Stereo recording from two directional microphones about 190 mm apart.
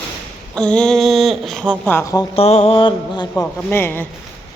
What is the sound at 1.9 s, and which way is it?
Speech, 15° left (ahead or behind).